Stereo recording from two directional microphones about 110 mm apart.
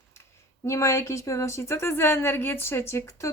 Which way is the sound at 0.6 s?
25° left (ahead or behind).